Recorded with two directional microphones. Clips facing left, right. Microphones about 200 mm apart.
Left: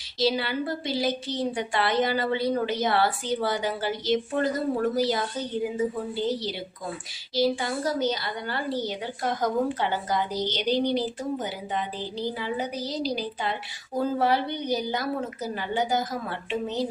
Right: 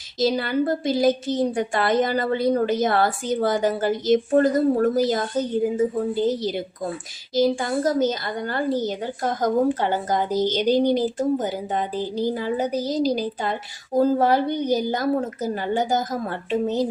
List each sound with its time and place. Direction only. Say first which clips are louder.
0.2 s speech: right 5 dB; 45° right (ahead or behind)